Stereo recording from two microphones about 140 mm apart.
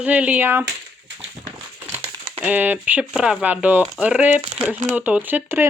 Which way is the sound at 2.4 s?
10° right (ahead or behind).